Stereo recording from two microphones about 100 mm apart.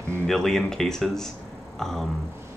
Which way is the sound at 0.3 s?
5° left (ahead or behind).